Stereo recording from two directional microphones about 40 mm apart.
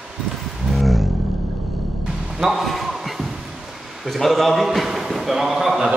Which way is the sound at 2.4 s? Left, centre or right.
Centre.